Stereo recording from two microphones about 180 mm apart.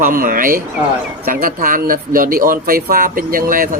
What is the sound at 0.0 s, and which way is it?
Speech, 50° right (ahead or behind).